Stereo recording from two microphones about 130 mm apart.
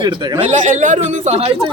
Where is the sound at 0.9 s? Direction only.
55° right (ahead or behind).